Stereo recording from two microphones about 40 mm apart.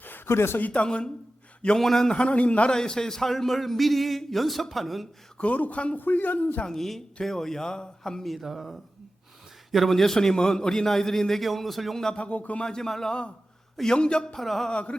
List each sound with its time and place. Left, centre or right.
0.0 s a sound: left
0.6 s speech: left
0.9 s a man's voice: left
1.8 s a man's voice: centre
2.1 s speech: left
2.6 s a man's voice: centre
5.4 s speech: left
6.0 s a man's voice: left
6.7 s a man's voice: centre
8.4 s a man's voice: centre
12.1 s a man's voice: left
12.6 s a man's voice: centre
14.3 s a man's voice: centre
14.7 s a man's voice: left